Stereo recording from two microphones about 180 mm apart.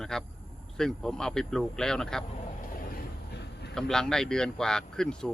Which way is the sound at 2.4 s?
40° left (ahead or behind).